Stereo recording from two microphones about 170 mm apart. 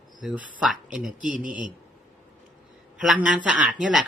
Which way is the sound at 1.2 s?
50° right (ahead or behind).